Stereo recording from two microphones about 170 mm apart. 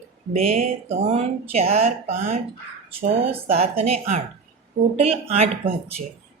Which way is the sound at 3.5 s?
35° right (ahead or behind).